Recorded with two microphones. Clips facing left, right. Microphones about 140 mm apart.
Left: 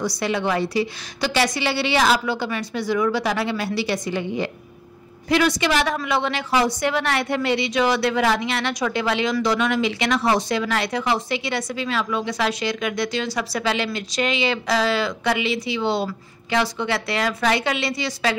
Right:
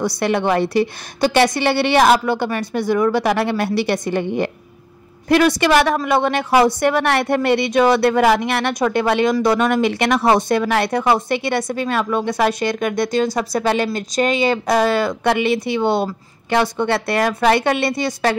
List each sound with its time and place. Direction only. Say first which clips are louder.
0.0 s a woman's voice: right 5 dB; 60° right (ahead or behind)